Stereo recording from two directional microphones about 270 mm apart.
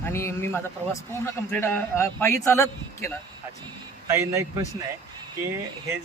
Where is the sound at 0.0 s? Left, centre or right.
Centre.